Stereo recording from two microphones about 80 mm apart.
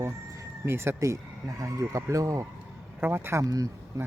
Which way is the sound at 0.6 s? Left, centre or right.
Right.